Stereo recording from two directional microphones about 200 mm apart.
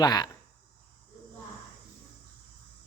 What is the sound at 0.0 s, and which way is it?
Speech, 20° left (ahead or behind).